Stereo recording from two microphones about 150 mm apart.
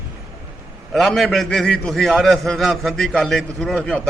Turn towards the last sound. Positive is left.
turn(degrees=5)  # may be behind; listen again after turning